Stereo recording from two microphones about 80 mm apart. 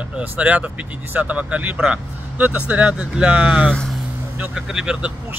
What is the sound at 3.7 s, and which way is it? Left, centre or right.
Speech, centre.